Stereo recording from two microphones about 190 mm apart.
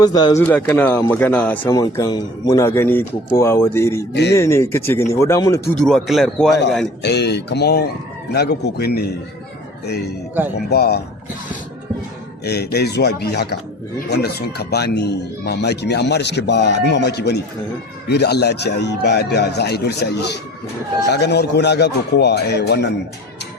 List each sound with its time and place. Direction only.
0.0 s speech: 20° left (ahead or behind)
0.4 s speech: 10° left (ahead or behind)
4.1 s speech: 60° left (ahead or behind)
4.4 s speech: 15° left (ahead or behind)
5.6 s speech: 5° left (ahead or behind)
7.0 s speech: 60° left (ahead or behind)
12.5 s speech: 60° left (ahead or behind)